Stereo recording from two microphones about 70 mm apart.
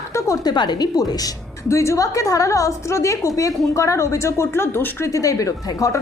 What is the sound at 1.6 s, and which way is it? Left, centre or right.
A woman's voice, left.